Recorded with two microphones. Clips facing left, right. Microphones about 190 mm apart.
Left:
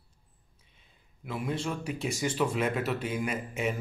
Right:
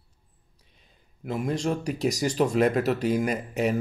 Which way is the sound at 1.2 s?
40° right (ahead or behind).